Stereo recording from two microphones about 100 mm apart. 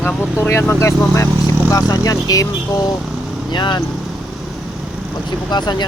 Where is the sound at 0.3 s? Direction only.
25° left (ahead or behind).